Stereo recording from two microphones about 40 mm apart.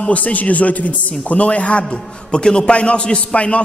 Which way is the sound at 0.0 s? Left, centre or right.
Left.